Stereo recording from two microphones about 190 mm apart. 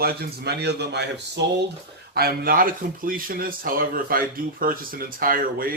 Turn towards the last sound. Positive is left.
turn(degrees=-50)  # may be behind; listen again after turning